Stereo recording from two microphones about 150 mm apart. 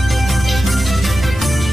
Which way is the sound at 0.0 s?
Centre (ahead or behind).